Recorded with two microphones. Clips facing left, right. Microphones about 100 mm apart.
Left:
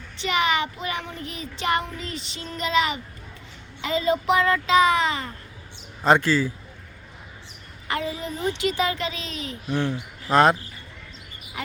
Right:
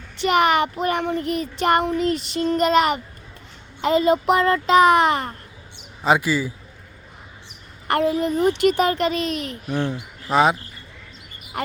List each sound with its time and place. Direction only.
0.2 s child singing: 55° right (ahead or behind)
6.0 s a man's voice: 5° right (ahead or behind)
7.9 s child singing: 60° right (ahead or behind)
9.6 s a man's voice: 15° right (ahead or behind)
10.2 s speech: 5° right (ahead or behind)